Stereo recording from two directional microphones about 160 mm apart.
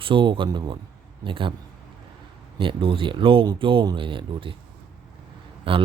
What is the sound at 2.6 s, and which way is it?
Speech, 30° right (ahead or behind).